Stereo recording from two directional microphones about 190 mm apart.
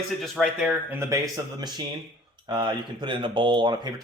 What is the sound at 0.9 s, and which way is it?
Speech, 15° right (ahead or behind).